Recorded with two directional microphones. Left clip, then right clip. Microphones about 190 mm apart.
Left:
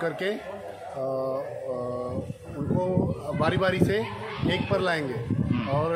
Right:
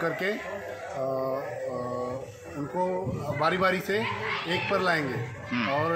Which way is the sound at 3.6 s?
35° left (ahead or behind).